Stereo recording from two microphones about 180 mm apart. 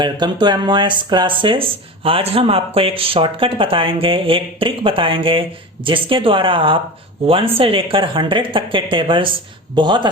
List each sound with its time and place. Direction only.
0.0 s speech: 25° right (ahead or behind)